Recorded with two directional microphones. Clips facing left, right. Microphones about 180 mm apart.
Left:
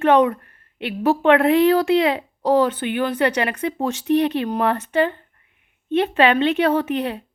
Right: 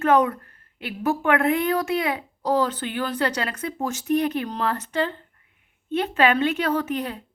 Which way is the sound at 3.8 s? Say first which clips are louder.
Left 4 dB; 30° left (ahead or behind).